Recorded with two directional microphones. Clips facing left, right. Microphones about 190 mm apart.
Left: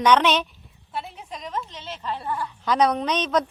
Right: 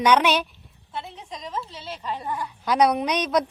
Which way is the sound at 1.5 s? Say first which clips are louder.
Even; 5° right (ahead or behind).